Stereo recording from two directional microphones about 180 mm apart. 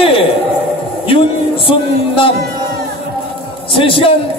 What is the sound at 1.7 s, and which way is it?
Speech, 30° left (ahead or behind).